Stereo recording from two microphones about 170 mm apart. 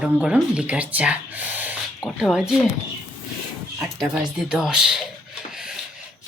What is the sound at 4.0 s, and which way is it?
Speech, 5° right (ahead or behind).